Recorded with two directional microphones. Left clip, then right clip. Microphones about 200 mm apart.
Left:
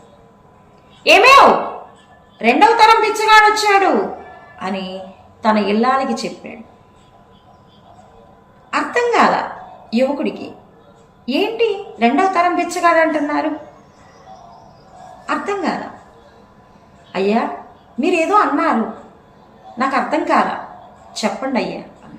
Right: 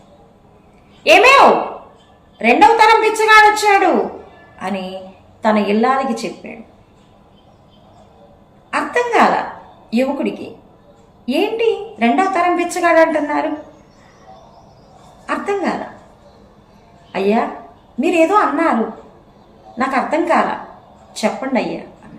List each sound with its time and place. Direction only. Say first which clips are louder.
1.0 s a woman's voice: even; 5° right (ahead or behind)
2.4 s a woman's voice: right 1 dB; 5° right (ahead or behind)
8.7 s a woman's voice: even; 5° right (ahead or behind)
15.3 s a woman's voice: right 1 dB; 5° right (ahead or behind)
17.1 s a woman's voice: right 1 dB; 5° right (ahead or behind)
19.8 s a woman's voice: even; 5° right (ahead or behind)